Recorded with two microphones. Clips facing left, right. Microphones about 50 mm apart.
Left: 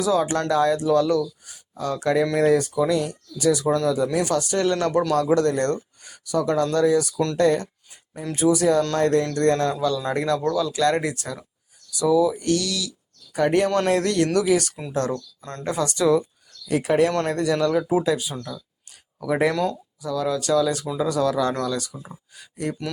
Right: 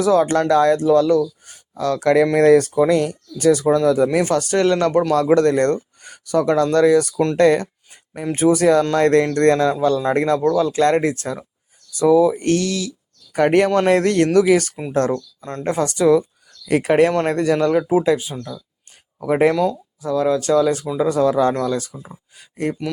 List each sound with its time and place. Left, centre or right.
0.0 s speech: right
1.7 s speech: right
8.2 s speech: right
10.0 s speech: right
16.6 s speech: right
18.3 s speech: centre
19.2 s speech: right
21.9 s speech: centre